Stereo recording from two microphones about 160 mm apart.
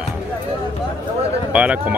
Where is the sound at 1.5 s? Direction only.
10° right (ahead or behind).